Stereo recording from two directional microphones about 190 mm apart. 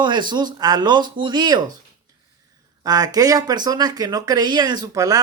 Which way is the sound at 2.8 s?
20° right (ahead or behind).